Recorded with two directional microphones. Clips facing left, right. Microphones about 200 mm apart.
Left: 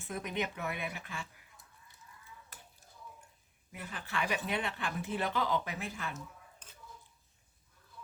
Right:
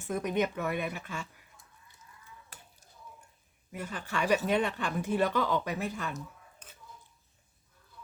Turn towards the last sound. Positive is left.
turn(degrees=-50)  # may be behind; listen again after turning